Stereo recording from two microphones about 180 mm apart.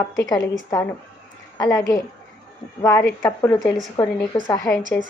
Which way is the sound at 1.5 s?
20° left (ahead or behind).